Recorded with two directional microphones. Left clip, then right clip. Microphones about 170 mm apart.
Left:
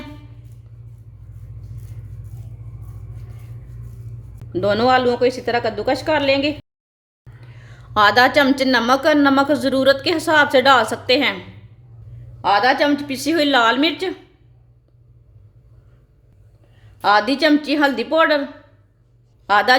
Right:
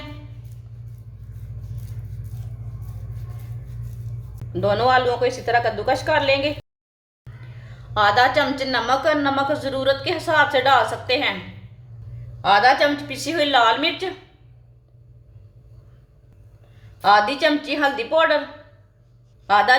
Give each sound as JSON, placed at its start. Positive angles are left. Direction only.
{"t": 4.5, "sound": "a woman's voice", "side_deg": 55}
{"t": 7.3, "sound": "music", "side_deg": 0}
{"t": 7.7, "sound": "a woman's voice", "side_deg": 60}
{"t": 12.4, "sound": "a woman's voice", "side_deg": 50}
{"t": 17.0, "sound": "a woman's voice", "side_deg": 55}
{"t": 19.5, "sound": "a woman's voice", "side_deg": 60}